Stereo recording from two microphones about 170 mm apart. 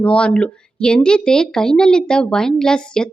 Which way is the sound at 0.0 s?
5° left (ahead or behind).